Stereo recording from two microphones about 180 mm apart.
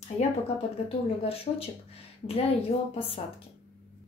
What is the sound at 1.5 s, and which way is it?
A woman's voice, 35° left (ahead or behind).